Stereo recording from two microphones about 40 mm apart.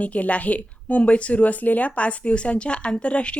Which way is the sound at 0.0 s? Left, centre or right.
Left.